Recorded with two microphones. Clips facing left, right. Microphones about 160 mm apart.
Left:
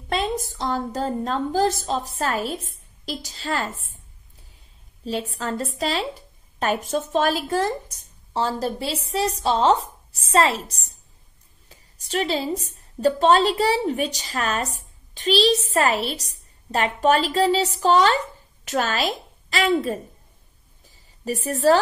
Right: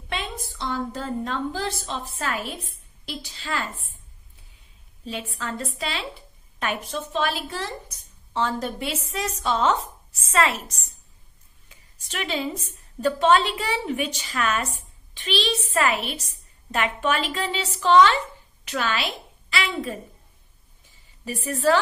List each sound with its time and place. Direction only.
0.1 s a woman's voice: 40° left (ahead or behind)
5.0 s a woman's voice: 40° left (ahead or behind)
20.8 s a sound: 40° left (ahead or behind)